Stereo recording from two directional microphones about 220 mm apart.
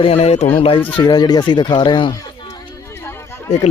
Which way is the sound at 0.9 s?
20° left (ahead or behind).